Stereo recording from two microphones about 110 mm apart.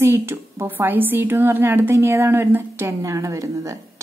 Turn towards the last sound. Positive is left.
turn(degrees=-30)  # may be behind; listen again after turning